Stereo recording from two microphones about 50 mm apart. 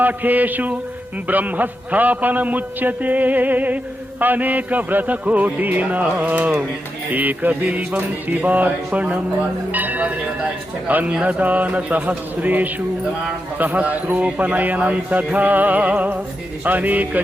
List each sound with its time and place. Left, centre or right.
0.0 s a man's voice: right